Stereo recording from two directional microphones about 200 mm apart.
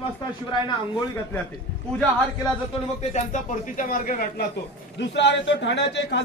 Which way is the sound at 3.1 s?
40° left (ahead or behind).